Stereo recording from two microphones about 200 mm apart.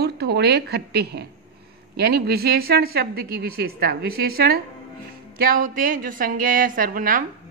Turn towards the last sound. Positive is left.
turn(degrees=-40)  # may be behind; listen again after turning